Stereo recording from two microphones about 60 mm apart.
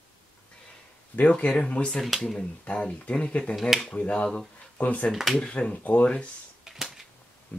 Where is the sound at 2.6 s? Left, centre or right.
Centre.